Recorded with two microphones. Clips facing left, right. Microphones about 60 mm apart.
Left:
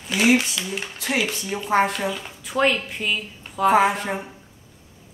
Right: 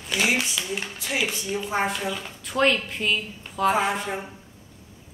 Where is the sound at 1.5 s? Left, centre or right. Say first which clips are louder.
Even; left.